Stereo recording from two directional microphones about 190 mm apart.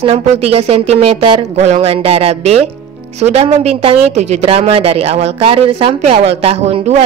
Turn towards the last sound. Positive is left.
turn(degrees=-35)  # may be behind; listen again after turning